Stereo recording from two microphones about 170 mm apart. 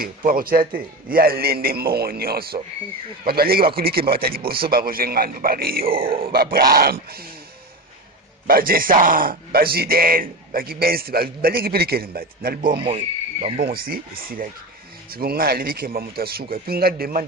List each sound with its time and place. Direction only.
0.3 s speech: 60° right (ahead or behind)
8.4 s speech: 60° right (ahead or behind)